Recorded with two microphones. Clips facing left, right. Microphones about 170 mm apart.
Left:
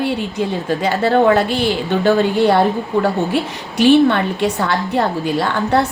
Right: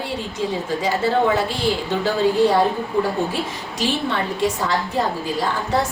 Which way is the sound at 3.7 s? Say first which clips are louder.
Left 12 dB; 65° left (ahead or behind).